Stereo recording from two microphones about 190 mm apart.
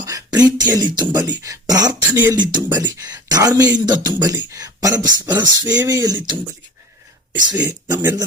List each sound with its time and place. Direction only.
0.0 s speech: 20° right (ahead or behind)
5.6 s speech: 5° right (ahead or behind)
5.9 s speech: 20° right (ahead or behind)
7.6 s speech: 20° right (ahead or behind)